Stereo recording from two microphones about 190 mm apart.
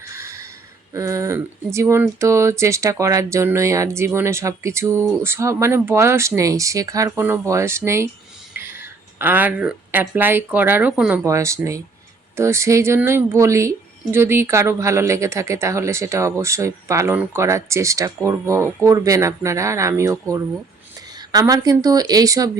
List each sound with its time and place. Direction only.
0.0 s a sound: 15° right (ahead or behind)
0.9 s speech: 15° right (ahead or behind)
11.3 s speech: 15° right (ahead or behind)